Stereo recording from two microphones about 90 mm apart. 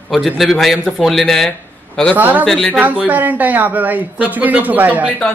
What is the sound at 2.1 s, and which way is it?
Speech, 20° right (ahead or behind).